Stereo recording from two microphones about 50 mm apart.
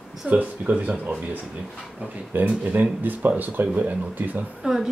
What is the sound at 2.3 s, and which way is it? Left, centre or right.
Speech, right.